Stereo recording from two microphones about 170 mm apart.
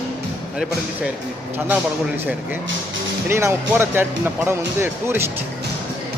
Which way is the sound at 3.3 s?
15° right (ahead or behind).